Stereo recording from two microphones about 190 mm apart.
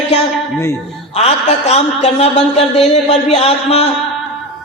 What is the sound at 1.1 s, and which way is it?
A man's voice, 35° left (ahead or behind).